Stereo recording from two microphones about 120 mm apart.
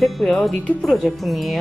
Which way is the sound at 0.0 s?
5° left (ahead or behind).